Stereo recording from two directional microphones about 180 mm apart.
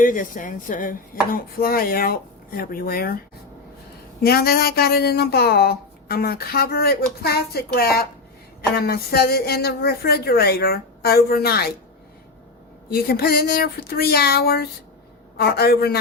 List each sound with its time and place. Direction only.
0.0 s speech: 50° left (ahead or behind)
4.2 s speech: 60° left (ahead or behind)
12.9 s speech: 60° left (ahead or behind)